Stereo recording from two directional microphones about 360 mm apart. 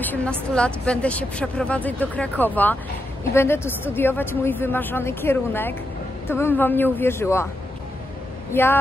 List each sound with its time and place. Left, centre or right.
0.0 s a woman's voice: centre
8.5 s a woman's voice: centre